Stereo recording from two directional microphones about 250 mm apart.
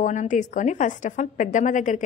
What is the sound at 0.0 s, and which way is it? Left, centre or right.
A woman's voice, left.